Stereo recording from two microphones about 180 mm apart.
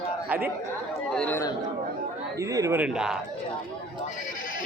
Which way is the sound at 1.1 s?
5° left (ahead or behind).